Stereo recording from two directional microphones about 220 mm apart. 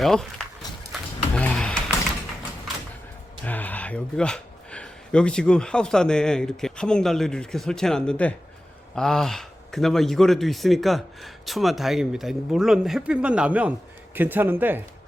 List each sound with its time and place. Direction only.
0.0 s speech: centre (ahead or behind)
1.4 s a sound: 5° left (ahead or behind)
3.4 s speech: 5° left (ahead or behind); by 14.8 s 10° right (ahead or behind)